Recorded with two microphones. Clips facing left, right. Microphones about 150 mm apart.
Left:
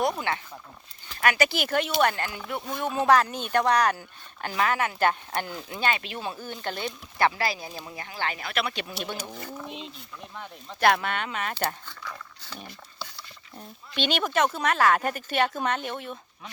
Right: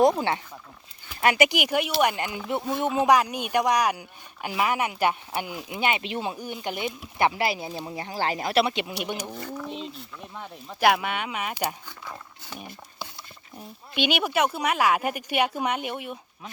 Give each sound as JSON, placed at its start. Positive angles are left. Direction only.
{"t": 1.2, "sound": "speech", "side_deg": -20}
{"t": 8.7, "sound": "speech", "side_deg": -20}
{"t": 9.6, "sound": "speech", "side_deg": 5}
{"t": 10.7, "sound": "speech", "side_deg": -10}